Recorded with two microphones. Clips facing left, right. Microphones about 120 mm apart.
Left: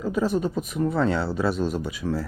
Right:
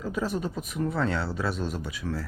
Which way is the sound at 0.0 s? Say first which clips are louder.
Left 6 dB; centre (ahead or behind).